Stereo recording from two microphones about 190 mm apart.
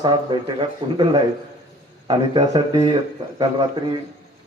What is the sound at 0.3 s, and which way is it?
Speech, 25° right (ahead or behind).